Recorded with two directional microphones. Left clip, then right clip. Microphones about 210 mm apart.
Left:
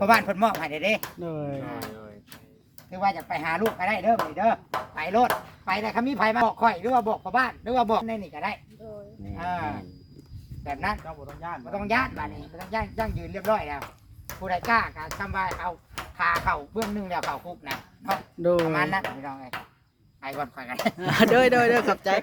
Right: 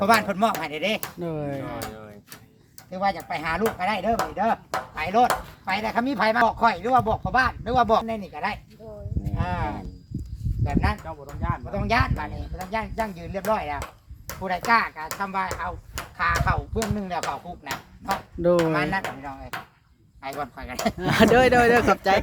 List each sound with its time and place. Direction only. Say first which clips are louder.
0.0 s speech: even; 5° left (ahead or behind)
1.0 s speech: right 3 dB; 10° right (ahead or behind)
2.9 s speech: right 1 dB; 10° left (ahead or behind)
8.0 s speech: right 2 dB; centre (ahead or behind)
11.0 s speech: right 3 dB; 30° right (ahead or behind)
11.7 s speech: right 1 dB; 5° left (ahead or behind)
21.0 s speech: right 2 dB; centre (ahead or behind)